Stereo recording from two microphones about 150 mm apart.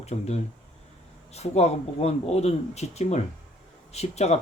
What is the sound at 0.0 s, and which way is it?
Speech, 45° left (ahead or behind).